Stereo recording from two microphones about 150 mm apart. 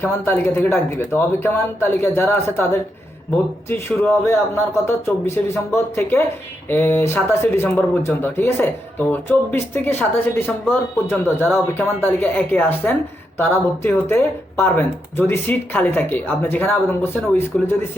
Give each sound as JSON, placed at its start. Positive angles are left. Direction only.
{"t": 0.0, "sound": "speech", "side_deg": 15}